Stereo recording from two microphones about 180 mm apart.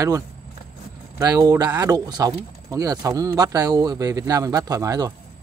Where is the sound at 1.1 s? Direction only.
20° right (ahead or behind).